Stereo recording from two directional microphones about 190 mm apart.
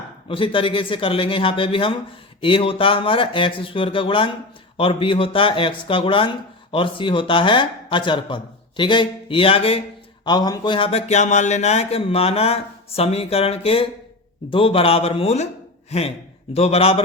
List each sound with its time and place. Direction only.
0.3 s speech: 30° left (ahead or behind)